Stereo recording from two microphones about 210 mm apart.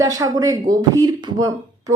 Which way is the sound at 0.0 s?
15° right (ahead or behind).